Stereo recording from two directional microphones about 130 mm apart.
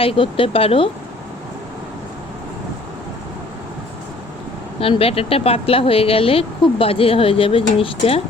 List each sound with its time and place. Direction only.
0.0 s a woman's voice: 45° left (ahead or behind)
4.8 s a woman's voice: 45° left (ahead or behind)